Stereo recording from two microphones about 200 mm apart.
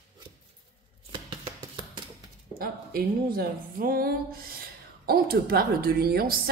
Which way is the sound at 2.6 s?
45° right (ahead or behind).